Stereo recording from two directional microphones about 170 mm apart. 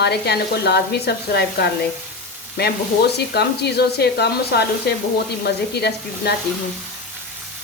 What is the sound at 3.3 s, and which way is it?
Speech, 75° left (ahead or behind).